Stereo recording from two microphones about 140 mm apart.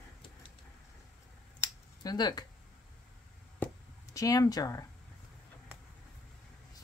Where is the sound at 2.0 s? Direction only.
30° left (ahead or behind).